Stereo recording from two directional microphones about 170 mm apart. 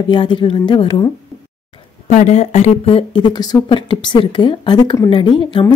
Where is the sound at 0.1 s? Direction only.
30° left (ahead or behind).